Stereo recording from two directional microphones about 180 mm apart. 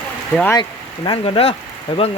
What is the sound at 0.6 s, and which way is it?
Speech, 25° left (ahead or behind).